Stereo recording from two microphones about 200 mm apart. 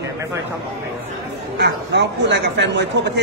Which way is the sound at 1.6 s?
60° right (ahead or behind).